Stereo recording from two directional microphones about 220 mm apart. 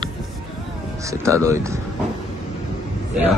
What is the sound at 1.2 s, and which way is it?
Speech, 15° right (ahead or behind).